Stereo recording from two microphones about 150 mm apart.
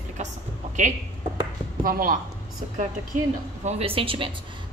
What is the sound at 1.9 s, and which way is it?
Speech, 70° right (ahead or behind).